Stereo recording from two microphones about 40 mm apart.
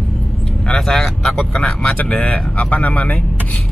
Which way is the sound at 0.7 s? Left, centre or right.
Centre.